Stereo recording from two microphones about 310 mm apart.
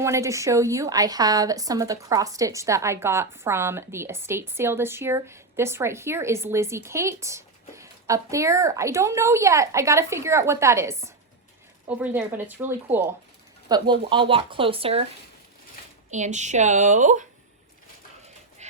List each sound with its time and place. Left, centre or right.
0.0 s a woman's voice: centre
16.0 s a woman's voice: right
18.6 s a sound: right